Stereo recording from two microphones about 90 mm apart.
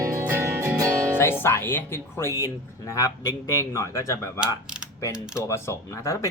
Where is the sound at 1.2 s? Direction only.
25° left (ahead or behind).